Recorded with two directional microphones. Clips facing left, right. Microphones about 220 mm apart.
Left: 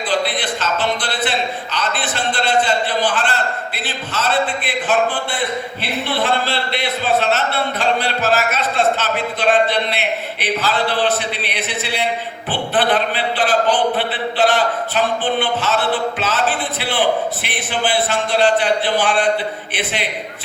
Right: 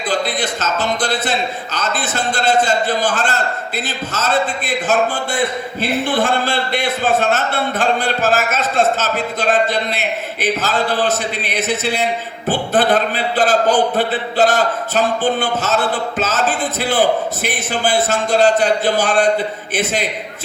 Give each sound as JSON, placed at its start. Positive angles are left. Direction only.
{"t": 0.1, "sound": "a man's voice", "side_deg": -45}